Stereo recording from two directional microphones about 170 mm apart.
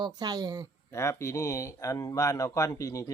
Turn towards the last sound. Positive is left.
turn(degrees=20)  # may be behind; listen again after turning